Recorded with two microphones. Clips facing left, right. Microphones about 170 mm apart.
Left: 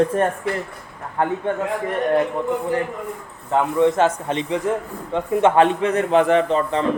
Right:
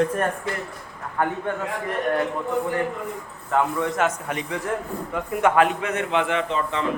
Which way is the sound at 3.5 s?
25° left (ahead or behind).